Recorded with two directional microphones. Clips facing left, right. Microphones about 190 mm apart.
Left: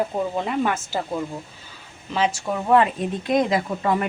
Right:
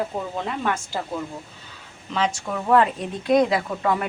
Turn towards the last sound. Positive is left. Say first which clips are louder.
# left 1 dB
turn(degrees=0)  # may be behind; listen again after turning